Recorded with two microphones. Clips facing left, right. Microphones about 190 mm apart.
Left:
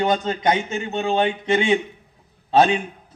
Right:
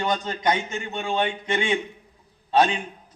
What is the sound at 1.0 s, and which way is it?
Speech, 35° left (ahead or behind).